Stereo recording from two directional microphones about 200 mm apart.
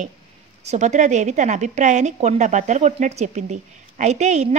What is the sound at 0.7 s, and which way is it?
A woman's voice, 35° right (ahead or behind).